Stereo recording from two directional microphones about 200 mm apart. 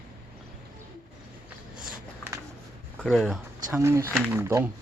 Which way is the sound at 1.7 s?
5° right (ahead or behind).